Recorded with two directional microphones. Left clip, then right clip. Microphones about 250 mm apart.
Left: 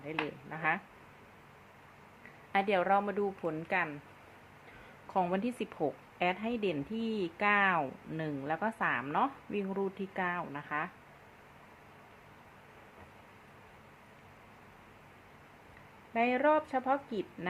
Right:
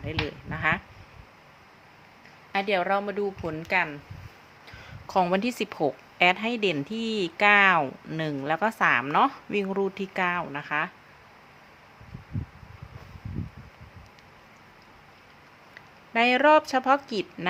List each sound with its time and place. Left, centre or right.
0.0 s a woman's voice: right
2.5 s a woman's voice: centre
5.0 s a woman's voice: right
16.1 s speech: right